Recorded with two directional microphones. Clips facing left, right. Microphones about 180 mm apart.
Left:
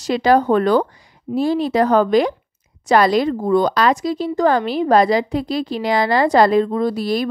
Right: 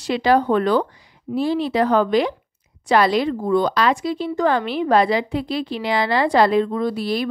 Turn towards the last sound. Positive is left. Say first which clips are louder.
# left 3 dB
turn(degrees=40)  # may be behind; listen again after turning